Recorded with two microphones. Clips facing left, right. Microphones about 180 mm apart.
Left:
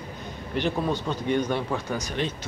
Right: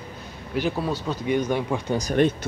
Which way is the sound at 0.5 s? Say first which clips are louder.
Right 1 dB; 5° right (ahead or behind).